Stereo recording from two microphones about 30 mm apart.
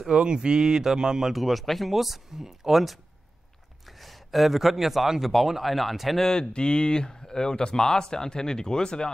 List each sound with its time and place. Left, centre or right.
0.1 s speech: right
1.3 s speech: centre
4.0 s a man's voice: centre
6.2 s speech: centre
6.5 s speech: left